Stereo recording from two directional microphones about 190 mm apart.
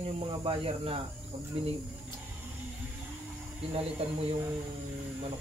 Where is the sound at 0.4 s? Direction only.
30° right (ahead or behind).